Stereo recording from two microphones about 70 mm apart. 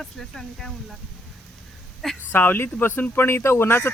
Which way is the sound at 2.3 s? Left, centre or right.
Left.